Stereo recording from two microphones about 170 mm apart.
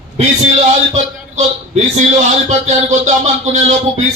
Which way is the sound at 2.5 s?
40° right (ahead or behind).